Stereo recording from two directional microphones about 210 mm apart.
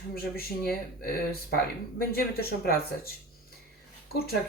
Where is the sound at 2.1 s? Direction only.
45° left (ahead or behind).